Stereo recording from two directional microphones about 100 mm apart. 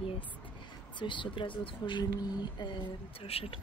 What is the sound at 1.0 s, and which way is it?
A woman's voice, 55° left (ahead or behind).